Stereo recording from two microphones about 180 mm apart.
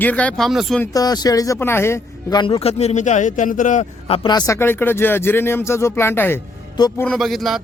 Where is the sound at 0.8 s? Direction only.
20° left (ahead or behind); by 4.1 s 45° left (ahead or behind).